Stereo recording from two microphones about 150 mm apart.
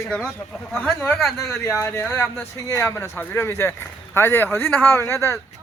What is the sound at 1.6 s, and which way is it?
Speech, 20° left (ahead or behind).